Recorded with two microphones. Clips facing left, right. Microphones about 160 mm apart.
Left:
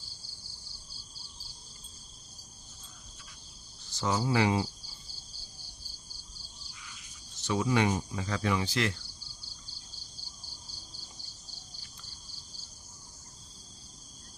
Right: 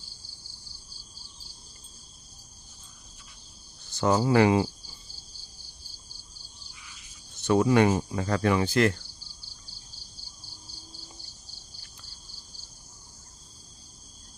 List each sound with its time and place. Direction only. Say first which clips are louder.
3.9 s cricket: right 7 dB; 55° right (ahead or behind)
7.3 s speech: right 7 dB; 55° right (ahead or behind)